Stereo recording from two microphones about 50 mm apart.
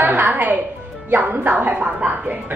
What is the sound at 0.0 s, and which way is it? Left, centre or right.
Music, right.